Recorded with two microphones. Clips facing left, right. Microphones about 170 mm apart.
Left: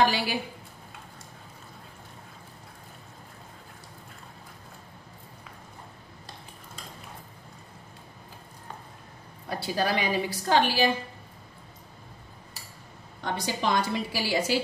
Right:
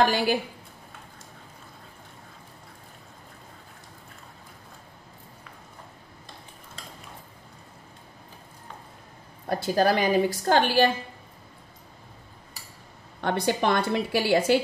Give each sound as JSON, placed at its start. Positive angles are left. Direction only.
{"t": 0.1, "sound": "a sound", "side_deg": -50}
{"t": 9.5, "sound": "a woman's voice", "side_deg": -45}
{"t": 13.2, "sound": "a woman's voice", "side_deg": -60}